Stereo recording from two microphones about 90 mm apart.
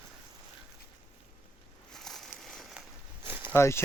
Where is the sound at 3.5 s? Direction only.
30° left (ahead or behind).